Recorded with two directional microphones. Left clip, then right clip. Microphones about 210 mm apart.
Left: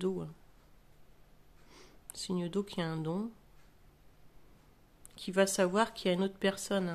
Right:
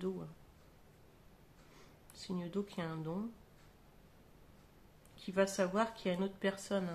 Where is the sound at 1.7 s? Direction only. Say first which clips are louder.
Left 8 dB; 50° left (ahead or behind).